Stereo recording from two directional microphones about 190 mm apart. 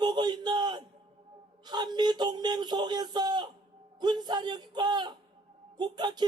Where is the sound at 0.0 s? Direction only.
20° right (ahead or behind).